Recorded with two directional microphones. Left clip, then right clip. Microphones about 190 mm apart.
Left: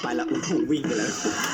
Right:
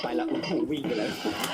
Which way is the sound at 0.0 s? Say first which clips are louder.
Left 2 dB; 30° left (ahead or behind).